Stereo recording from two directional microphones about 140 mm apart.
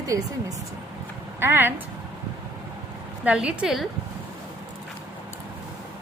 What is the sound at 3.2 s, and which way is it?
Speech, 5° right (ahead or behind).